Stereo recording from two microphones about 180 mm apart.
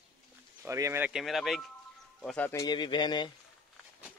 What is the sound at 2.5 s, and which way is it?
Speech, 20° left (ahead or behind).